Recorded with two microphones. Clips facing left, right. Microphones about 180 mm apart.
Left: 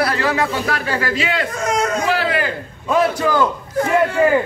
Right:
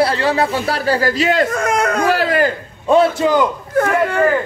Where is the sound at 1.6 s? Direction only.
60° right (ahead or behind).